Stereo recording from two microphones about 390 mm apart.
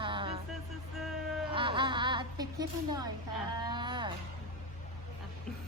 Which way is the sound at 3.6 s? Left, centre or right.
Centre.